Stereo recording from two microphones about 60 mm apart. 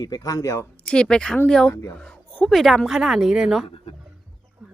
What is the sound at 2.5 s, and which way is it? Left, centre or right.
Speech, centre.